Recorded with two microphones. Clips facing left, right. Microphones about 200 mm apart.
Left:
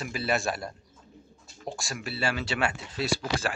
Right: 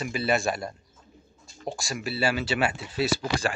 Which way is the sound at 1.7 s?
Centre (ahead or behind).